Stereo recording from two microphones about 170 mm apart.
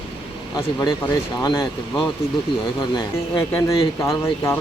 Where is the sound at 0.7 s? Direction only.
25° left (ahead or behind).